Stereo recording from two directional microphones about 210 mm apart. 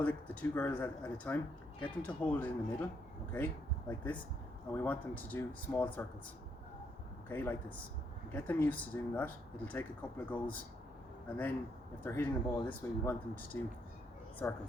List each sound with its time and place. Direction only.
0.0 s speech: 10° left (ahead or behind)
7.3 s speech: 10° left (ahead or behind)